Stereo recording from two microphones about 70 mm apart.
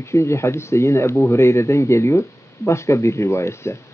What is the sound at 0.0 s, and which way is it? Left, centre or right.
Speech, left.